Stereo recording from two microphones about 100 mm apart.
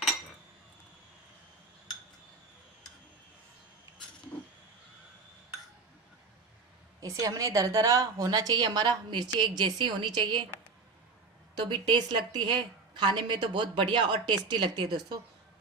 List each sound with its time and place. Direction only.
7.0 s a woman's voice: 35° right (ahead or behind); by 10.4 s 50° right (ahead or behind)
11.6 s a woman's voice: 50° right (ahead or behind)